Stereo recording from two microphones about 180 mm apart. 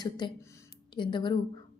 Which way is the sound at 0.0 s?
25° left (ahead or behind).